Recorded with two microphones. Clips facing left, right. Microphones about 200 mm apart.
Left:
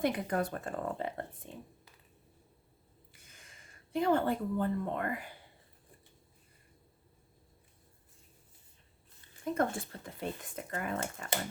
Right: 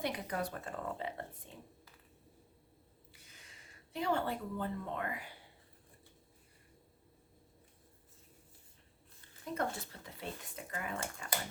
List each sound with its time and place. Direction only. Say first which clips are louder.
0.0 s speech: left 6 dB; 50° left (ahead or behind)
3.1 s speech: left 1 dB; 50° left (ahead or behind)
9.4 s speech: left 6 dB; 50° left (ahead or behind)